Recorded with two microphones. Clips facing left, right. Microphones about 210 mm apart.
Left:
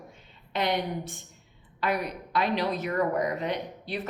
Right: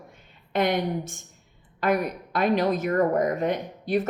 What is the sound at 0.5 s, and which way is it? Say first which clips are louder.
Speech: right 4 dB; 50° right (ahead or behind).